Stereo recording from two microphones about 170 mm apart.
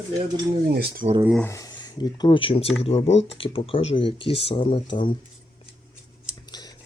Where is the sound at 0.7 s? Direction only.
65° right (ahead or behind).